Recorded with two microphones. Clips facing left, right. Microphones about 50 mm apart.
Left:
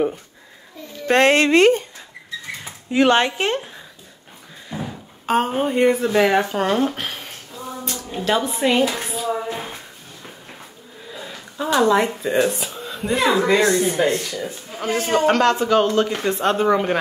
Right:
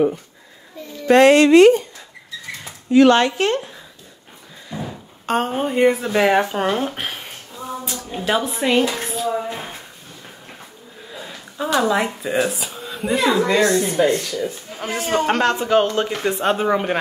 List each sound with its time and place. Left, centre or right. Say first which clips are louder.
1.0 s a woman's voice: right 4 dB; left
2.9 s speech: right 3 dB; left
4.7 s a sound: even; left
5.2 s speech: left 1 dB; centre
11.1 s speech: left 1 dB; centre
14.9 s a man's voice: left 2 dB; centre
15.6 s speech: even; centre